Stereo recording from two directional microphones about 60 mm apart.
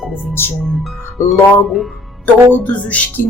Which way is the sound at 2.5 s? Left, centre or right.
Left.